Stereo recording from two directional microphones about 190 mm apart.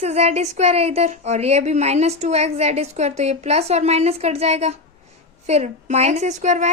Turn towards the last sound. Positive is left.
turn(degrees=-40)  # may be behind; listen again after turning